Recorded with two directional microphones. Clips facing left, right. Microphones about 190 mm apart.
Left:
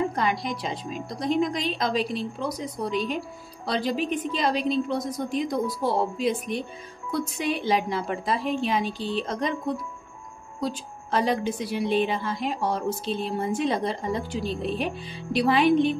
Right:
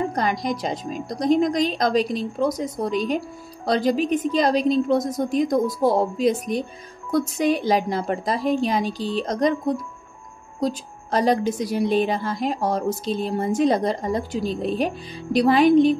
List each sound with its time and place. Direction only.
0.1 s a woman's voice: 40° right (ahead or behind)